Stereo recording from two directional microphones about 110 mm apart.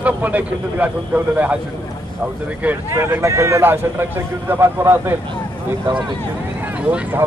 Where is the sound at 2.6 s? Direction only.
20° right (ahead or behind).